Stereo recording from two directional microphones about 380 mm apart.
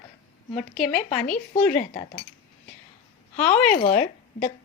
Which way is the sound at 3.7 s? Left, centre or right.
Centre.